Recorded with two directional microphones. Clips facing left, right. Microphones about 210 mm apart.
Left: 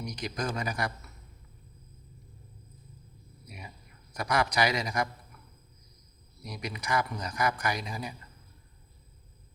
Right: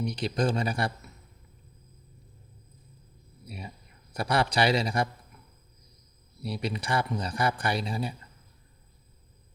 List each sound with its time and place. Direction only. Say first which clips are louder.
0.0 s speech: right 6 dB; 30° right (ahead or behind)
3.4 s a sound: right 5 dB; 30° right (ahead or behind)
4.1 s speech: right 2 dB; 30° right (ahead or behind)
6.4 s speech: right 6 dB; 30° right (ahead or behind)